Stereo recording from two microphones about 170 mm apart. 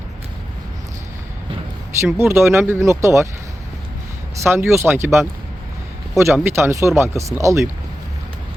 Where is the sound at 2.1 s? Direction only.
15° right (ahead or behind).